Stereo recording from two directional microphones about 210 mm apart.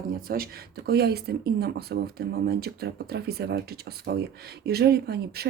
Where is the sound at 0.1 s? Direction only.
45° right (ahead or behind).